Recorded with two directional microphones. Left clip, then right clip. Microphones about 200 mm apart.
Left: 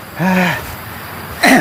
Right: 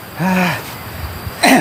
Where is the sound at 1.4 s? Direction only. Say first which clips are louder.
Left 1 dB; centre (ahead or behind).